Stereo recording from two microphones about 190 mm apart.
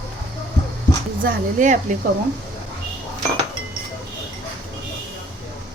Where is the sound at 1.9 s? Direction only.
40° right (ahead or behind).